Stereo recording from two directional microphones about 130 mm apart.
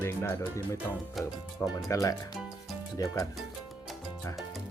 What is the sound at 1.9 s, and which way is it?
Speech, 25° left (ahead or behind).